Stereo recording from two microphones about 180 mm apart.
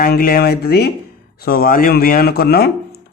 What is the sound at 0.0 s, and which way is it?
A man's voice, 55° left (ahead or behind).